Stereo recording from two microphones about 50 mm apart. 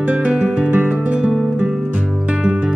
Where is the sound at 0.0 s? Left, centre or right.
Right.